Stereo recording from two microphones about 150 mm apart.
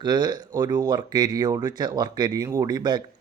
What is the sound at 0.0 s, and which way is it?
Speech, 30° right (ahead or behind).